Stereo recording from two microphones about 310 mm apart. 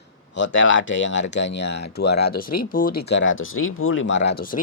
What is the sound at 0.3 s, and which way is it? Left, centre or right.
Speech, left.